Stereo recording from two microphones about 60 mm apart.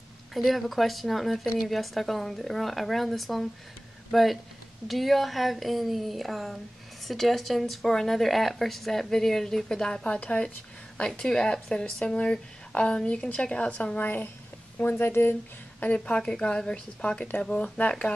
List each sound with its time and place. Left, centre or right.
0.3 s speech: centre
14.0 s speech: left
15.8 s a woman's voice: left